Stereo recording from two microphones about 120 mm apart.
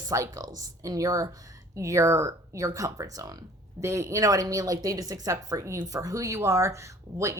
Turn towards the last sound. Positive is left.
turn(degrees=-25)  # may be behind; listen again after turning